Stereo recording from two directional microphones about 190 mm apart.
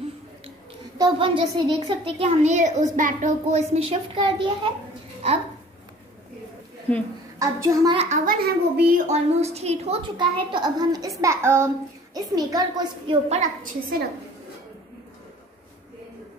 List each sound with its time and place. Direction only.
0.9 s a child's voice: 25° right (ahead or behind)
7.3 s a woman's voice: 20° right (ahead or behind)
8.0 s a child's voice: 40° right (ahead or behind)
8.5 s a woman's voice: 55° right (ahead or behind)
9.0 s a woman's voice: 35° right (ahead or behind)
13.4 s a woman's voice: 45° right (ahead or behind)